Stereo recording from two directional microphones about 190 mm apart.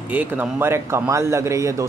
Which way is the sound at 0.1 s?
10° right (ahead or behind).